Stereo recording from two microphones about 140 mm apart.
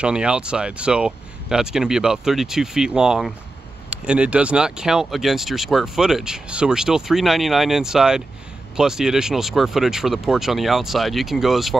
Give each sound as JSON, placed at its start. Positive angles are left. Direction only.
{"t": 0.0, "sound": "speech", "side_deg": -5}